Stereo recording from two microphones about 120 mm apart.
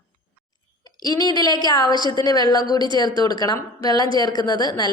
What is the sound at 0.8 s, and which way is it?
A woman's voice, 35° left (ahead or behind).